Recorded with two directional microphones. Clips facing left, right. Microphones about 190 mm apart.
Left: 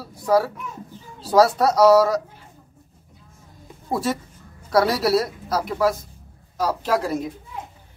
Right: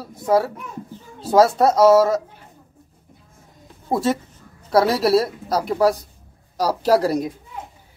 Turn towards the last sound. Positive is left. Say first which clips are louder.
# right 5 dB
turn(degrees=-40)  # may be behind; listen again after turning